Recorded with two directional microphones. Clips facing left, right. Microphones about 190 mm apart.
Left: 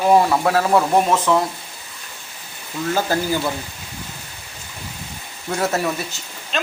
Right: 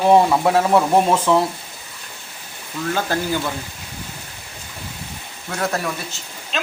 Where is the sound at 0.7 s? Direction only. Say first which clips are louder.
Right 1 dB; 5° right (ahead or behind).